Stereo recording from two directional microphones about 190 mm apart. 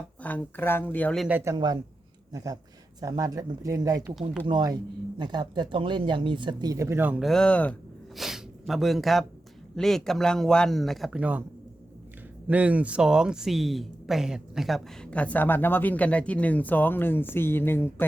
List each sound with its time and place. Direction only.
0.2 s speech: 10° left (ahead or behind)
1.5 s speech: 20° right (ahead or behind)
12.5 s speech: 5° right (ahead or behind); by 18.0 s 10° left (ahead or behind)